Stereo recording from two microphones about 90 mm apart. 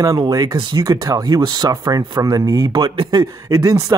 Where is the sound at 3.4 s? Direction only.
35° right (ahead or behind).